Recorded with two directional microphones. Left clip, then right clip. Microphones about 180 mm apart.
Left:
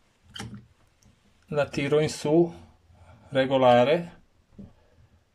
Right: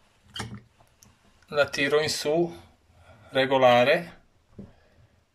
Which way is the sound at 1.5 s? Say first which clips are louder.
Right 1 dB; 40° left (ahead or behind).